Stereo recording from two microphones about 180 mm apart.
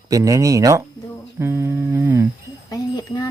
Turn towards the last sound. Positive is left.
turn(degrees=20)  # may be behind; listen again after turning